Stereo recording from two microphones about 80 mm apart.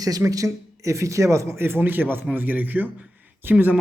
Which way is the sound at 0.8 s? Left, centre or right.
Right.